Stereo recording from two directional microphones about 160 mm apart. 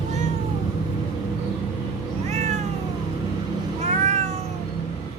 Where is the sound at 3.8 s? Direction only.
45° right (ahead or behind).